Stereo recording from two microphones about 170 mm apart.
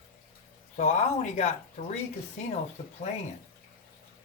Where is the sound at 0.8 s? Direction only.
40° left (ahead or behind).